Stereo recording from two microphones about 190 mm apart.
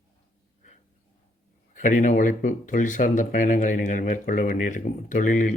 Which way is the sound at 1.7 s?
40° left (ahead or behind).